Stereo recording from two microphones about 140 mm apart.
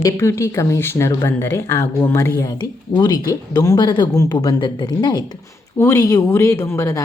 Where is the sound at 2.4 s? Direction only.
30° left (ahead or behind).